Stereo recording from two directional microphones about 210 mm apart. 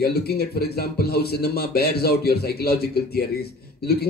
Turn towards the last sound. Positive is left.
turn(degrees=50)  # may be behind; listen again after turning